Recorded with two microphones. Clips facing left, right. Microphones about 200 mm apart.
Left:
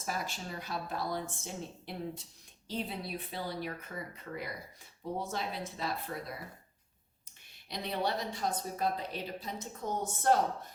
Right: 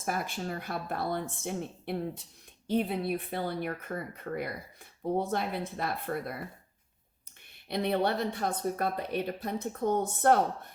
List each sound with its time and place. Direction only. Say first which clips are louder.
0.0 s speech: right 5 dB; 55° right (ahead or behind)
7.7 s speech: right 6 dB; 60° right (ahead or behind)